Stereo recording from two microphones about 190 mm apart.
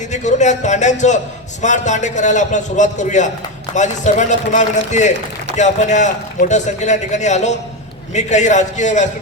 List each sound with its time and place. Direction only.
0.1 s a man's voice: 40° left (ahead or behind)